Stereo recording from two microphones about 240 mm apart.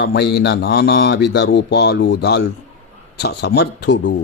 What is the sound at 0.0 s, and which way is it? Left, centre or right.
Speech, left.